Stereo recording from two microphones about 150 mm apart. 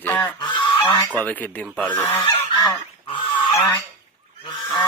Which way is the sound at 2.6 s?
30° left (ahead or behind).